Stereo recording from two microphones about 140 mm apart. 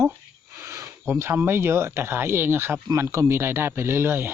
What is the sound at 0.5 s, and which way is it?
Speech, 20° right (ahead or behind).